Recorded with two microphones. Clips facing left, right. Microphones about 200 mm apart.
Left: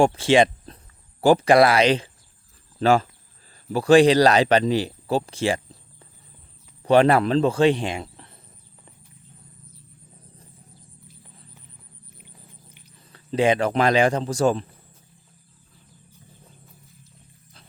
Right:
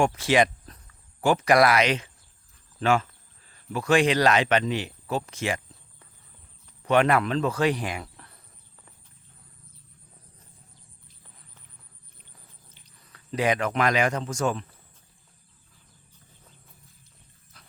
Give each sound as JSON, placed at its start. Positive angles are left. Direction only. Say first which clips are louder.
{"t": 0.0, "sound": "speech", "louder": "left 5 dB", "side_deg": 30}
{"t": 6.8, "sound": "speech", "louder": "left 5 dB", "side_deg": 30}
{"t": 13.1, "sound": "speech", "louder": "left 5 dB", "side_deg": 30}